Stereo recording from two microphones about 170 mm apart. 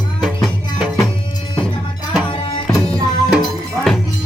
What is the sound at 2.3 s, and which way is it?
Music, 25° left (ahead or behind).